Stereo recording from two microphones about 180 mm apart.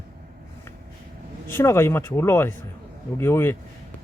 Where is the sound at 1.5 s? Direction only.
15° left (ahead or behind).